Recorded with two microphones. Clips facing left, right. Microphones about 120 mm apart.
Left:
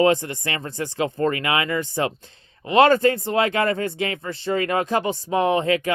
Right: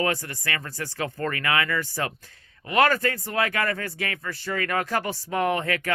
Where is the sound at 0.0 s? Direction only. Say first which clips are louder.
Left 8 dB; 20° left (ahead or behind).